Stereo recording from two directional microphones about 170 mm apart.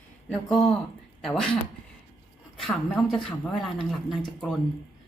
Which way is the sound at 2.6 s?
Centre (ahead or behind).